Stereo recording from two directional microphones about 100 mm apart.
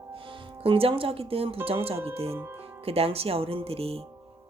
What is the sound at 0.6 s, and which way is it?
Speech, 70° right (ahead or behind).